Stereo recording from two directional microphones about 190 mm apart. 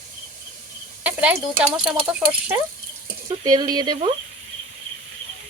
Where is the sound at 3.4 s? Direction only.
20° right (ahead or behind).